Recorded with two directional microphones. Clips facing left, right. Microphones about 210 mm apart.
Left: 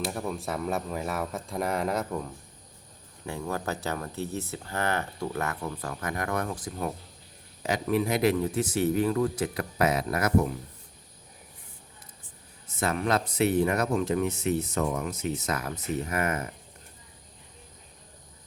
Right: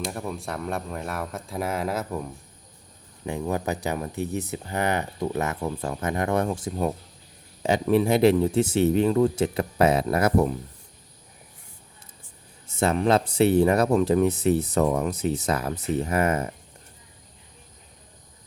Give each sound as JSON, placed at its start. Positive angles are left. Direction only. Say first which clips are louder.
{"t": 0.0, "sound": "speech", "louder": "even", "side_deg": 0}
{"t": 3.2, "sound": "speech", "louder": "right 5 dB", "side_deg": -20}
{"t": 12.8, "sound": "speech", "louder": "right 6 dB", "side_deg": -30}